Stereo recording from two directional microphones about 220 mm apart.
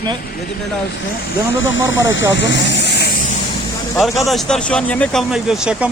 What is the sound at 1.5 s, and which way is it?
Speech, 60° left (ahead or behind).